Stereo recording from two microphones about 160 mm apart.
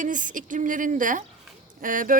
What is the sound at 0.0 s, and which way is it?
Speech, 55° right (ahead or behind).